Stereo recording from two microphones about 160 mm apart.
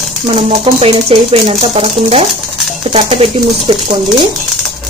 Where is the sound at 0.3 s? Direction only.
40° right (ahead or behind).